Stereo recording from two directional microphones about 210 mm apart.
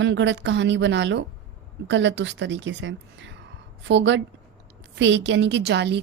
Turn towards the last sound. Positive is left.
turn(degrees=-55)  # may be behind; listen again after turning